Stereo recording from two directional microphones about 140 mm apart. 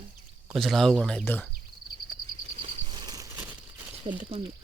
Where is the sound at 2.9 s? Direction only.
30° right (ahead or behind).